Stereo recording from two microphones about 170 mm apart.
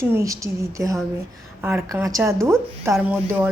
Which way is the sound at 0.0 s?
15° right (ahead or behind).